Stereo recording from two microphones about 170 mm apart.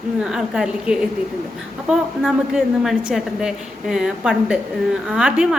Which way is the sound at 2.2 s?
Centre (ahead or behind).